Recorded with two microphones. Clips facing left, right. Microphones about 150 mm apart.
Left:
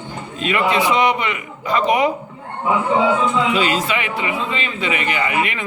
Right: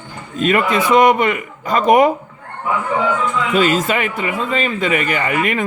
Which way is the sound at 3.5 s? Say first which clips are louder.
Right 4 dB; 45° right (ahead or behind).